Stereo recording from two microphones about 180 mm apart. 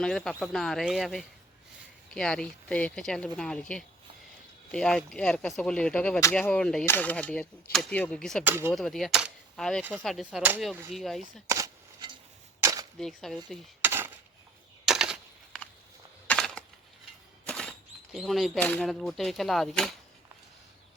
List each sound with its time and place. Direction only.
0.0 s speech: 5° left (ahead or behind)
8.4 s speech: 10° right (ahead or behind)
8.7 s speech: centre (ahead or behind)
11.4 s a sound: 20° right (ahead or behind)
13.0 s speech: centre (ahead or behind)
13.8 s a sound: 10° right (ahead or behind); by 16.6 s 5° left (ahead or behind)
17.4 s speech: 5° left (ahead or behind)